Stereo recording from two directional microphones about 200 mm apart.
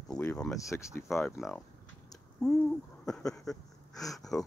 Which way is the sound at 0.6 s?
15° left (ahead or behind).